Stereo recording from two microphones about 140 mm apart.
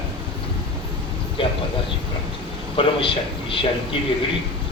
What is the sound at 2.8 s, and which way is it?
Speech, 40° left (ahead or behind).